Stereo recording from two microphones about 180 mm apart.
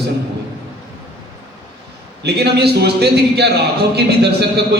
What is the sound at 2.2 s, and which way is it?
A man's voice, 65° right (ahead or behind).